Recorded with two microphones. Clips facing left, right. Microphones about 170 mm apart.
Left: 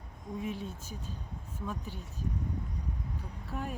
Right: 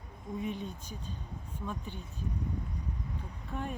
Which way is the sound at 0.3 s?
Centre (ahead or behind).